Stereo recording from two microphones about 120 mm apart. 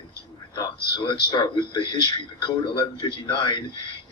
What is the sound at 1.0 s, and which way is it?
A man's voice, 40° left (ahead or behind).